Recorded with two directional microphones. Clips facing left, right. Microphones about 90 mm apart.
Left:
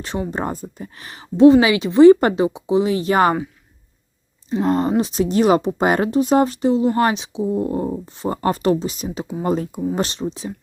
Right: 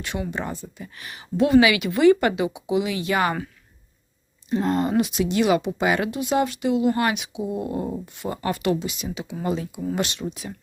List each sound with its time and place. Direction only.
0.0 s speech: 35° left (ahead or behind)
4.9 s speech: 30° left (ahead or behind)